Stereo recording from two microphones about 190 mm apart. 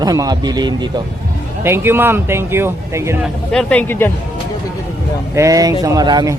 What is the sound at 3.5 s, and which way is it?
Speech, 5° left (ahead or behind).